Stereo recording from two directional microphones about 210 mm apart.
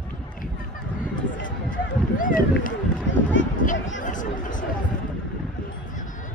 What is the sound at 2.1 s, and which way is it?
Speech, 40° left (ahead or behind).